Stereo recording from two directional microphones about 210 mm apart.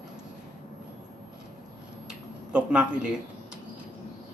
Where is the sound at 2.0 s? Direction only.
5° right (ahead or behind).